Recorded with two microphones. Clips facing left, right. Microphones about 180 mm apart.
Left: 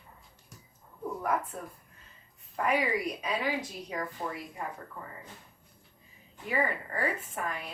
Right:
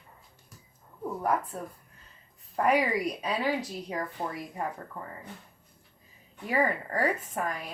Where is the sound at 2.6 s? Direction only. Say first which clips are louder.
Right 3 dB; 35° right (ahead or behind).